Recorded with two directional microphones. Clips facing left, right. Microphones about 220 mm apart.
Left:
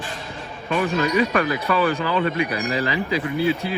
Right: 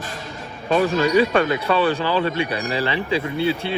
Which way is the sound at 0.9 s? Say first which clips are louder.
Right 2 dB; 30° right (ahead or behind).